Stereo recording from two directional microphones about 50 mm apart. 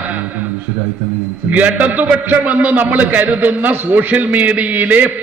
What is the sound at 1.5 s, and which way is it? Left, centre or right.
A man's voice, right.